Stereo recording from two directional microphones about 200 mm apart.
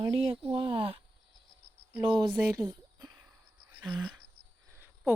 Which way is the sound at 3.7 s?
20° right (ahead or behind).